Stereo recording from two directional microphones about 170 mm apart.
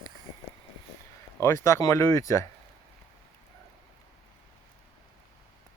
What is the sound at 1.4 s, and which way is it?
Speech, 15° left (ahead or behind).